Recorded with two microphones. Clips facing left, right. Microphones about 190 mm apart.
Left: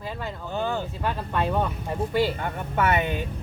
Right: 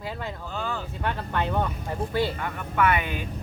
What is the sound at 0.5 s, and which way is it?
Speech, 25° left (ahead or behind).